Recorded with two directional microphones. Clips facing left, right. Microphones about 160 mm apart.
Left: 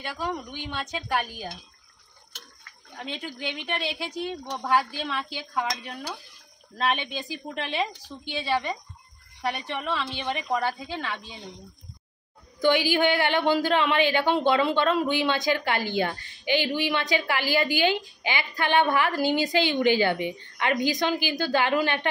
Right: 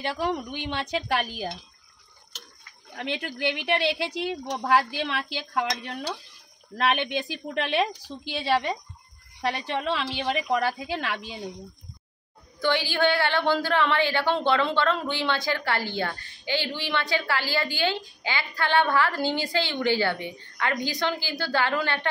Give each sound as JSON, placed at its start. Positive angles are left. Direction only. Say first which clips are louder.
{"t": 0.0, "sound": "a woman's voice", "louder": "right 4 dB", "side_deg": -80}
{"t": 3.0, "sound": "a woman's voice", "louder": "right 5 dB", "side_deg": -75}
{"t": 9.4, "sound": "a woman's voice", "louder": "right 2 dB", "side_deg": -90}
{"t": 12.5, "sound": "a woman's voice", "louder": "left 3 dB", "side_deg": 15}